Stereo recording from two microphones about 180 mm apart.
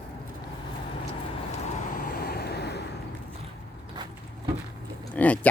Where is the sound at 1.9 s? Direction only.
60° left (ahead or behind).